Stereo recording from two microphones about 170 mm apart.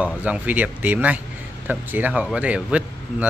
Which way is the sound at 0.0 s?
10° right (ahead or behind).